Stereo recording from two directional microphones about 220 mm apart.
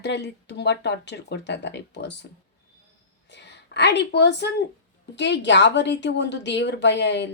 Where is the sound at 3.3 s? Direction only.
50° left (ahead or behind).